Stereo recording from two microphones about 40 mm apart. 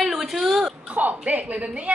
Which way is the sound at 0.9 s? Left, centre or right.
Right.